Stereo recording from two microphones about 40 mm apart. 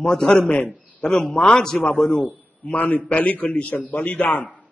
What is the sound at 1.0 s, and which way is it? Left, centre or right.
Speech, left.